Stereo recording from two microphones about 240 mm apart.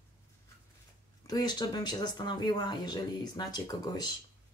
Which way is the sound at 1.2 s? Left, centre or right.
Centre.